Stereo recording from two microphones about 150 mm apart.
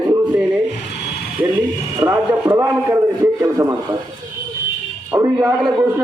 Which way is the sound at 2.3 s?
15° right (ahead or behind).